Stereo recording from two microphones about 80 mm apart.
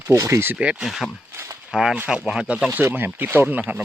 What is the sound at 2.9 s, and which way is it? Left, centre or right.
Speech, right.